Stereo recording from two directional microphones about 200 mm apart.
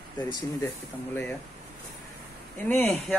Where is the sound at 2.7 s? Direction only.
10° left (ahead or behind).